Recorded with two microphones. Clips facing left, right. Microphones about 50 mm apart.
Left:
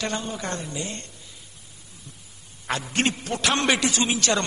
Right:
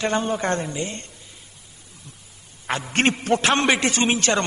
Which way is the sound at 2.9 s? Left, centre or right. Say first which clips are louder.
Right 7 dB; right.